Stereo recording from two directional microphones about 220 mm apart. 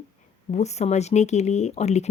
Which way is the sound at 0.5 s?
30° left (ahead or behind).